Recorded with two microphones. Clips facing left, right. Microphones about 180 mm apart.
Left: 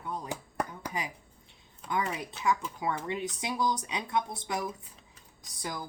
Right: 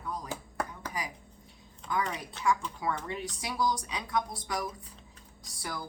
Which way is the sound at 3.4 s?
20° left (ahead or behind).